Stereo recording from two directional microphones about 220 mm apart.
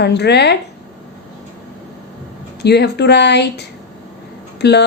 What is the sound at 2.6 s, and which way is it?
A woman's voice, 50° left (ahead or behind).